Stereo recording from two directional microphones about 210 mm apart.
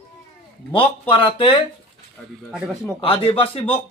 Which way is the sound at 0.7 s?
25° left (ahead or behind).